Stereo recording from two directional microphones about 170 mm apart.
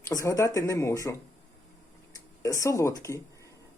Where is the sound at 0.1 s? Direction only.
20° left (ahead or behind).